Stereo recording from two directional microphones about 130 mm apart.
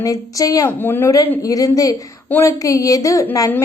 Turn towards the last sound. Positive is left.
turn(degrees=20)  # may be behind; listen again after turning